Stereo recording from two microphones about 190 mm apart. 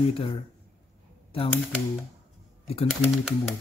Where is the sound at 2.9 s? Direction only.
Centre (ahead or behind).